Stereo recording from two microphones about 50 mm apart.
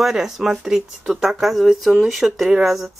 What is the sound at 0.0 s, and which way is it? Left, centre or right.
Speech, centre.